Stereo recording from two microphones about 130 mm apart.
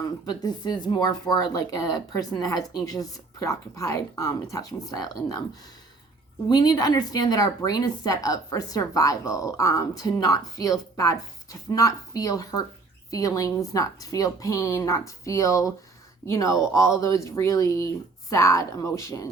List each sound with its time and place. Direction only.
0.3 s speech: 30° left (ahead or behind)
6.5 s speech: 30° left (ahead or behind)